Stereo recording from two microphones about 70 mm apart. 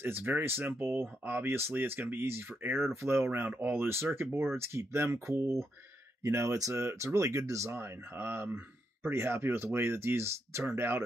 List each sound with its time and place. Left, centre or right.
0.0 s speech: right